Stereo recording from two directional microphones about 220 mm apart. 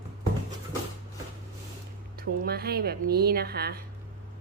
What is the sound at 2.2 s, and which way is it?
A woman's voice, 45° right (ahead or behind).